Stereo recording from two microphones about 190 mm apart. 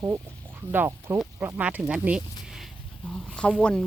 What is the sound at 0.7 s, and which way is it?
Speech, 10° right (ahead or behind).